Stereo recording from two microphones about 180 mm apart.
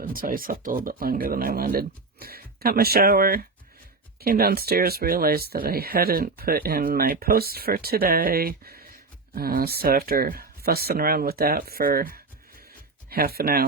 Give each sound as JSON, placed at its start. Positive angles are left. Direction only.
{"t": 0.0, "sound": "speech", "side_deg": -50}